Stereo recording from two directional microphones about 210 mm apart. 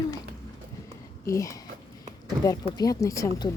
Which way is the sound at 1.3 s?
15° left (ahead or behind).